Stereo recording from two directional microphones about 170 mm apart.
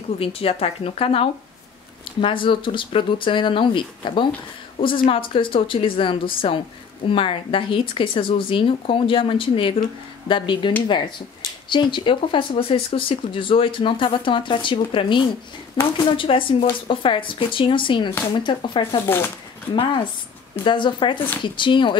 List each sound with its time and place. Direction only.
0.2 s speech: 35° left (ahead or behind)
11.7 s speech: 30° left (ahead or behind)
19.0 s speech: 10° left (ahead or behind)
19.7 s speech: 30° left (ahead or behind)